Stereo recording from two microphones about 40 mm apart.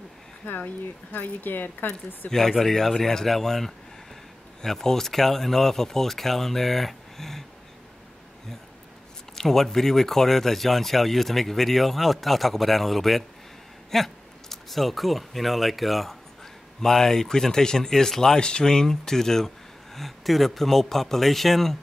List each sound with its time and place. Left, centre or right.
1.1 s speech: left
1.5 s speech: left
2.6 s speech: centre
9.3 s speech: centre